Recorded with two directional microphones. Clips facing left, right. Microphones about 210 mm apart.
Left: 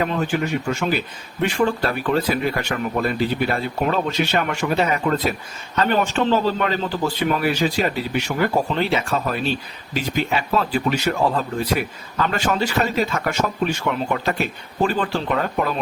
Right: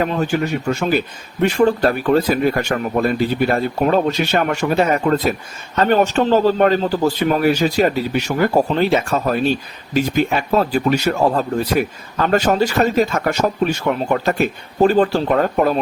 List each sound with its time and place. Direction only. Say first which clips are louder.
0.0 s a man's voice: right 3 dB; 40° right (ahead or behind)